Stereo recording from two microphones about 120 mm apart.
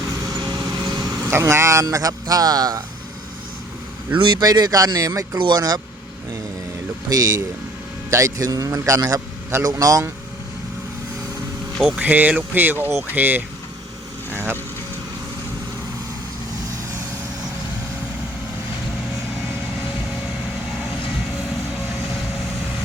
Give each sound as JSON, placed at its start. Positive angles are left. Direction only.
{"t": 0.3, "sound": "vehicle", "side_deg": -35}
{"t": 1.2, "sound": "speech", "side_deg": -20}
{"t": 4.1, "sound": "speech", "side_deg": -40}
{"t": 7.1, "sound": "speech", "side_deg": -30}
{"t": 11.9, "sound": "speech", "side_deg": -15}